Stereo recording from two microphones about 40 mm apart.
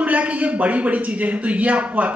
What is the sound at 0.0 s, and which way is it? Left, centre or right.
A man's voice, right.